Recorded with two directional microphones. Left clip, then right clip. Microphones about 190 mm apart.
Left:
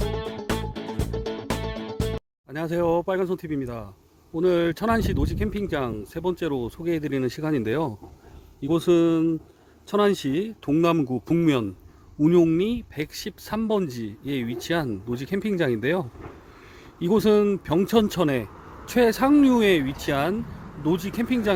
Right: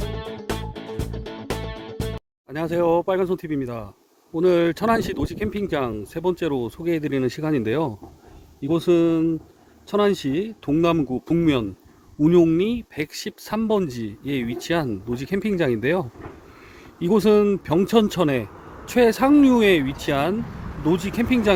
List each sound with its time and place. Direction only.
0.0 s music: centre (ahead or behind)
4.4 s speech: 5° left (ahead or behind)